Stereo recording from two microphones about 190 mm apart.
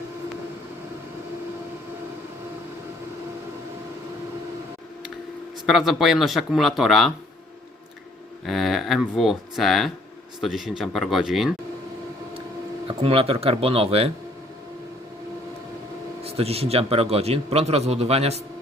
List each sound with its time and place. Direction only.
5.6 s speech: centre (ahead or behind)
8.4 s speech: centre (ahead or behind)
13.0 s a man's voice: 30° right (ahead or behind)
16.2 s a man's voice: 30° right (ahead or behind)